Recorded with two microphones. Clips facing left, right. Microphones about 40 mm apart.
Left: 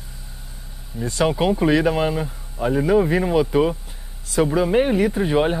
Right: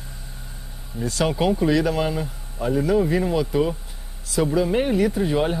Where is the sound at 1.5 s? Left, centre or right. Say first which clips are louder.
Left 2 dB; left.